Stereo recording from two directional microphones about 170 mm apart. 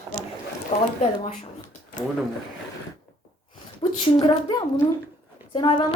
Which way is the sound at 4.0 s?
30° left (ahead or behind).